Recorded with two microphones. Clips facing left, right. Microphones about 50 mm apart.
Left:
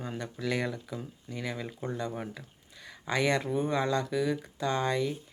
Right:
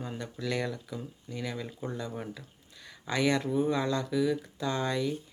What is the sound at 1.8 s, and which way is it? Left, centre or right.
Speech, centre.